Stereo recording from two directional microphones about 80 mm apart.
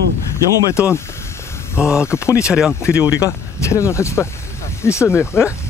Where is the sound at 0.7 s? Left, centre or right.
Left.